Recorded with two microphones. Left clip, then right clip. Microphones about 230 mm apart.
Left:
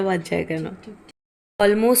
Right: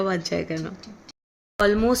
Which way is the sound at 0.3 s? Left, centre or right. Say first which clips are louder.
Left 3 dB; centre.